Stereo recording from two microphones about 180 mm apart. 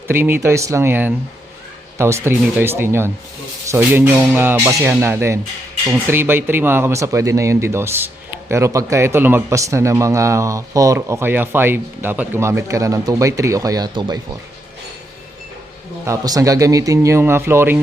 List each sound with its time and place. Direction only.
0.1 s speech: 15° right (ahead or behind)
16.0 s speech: 20° right (ahead or behind)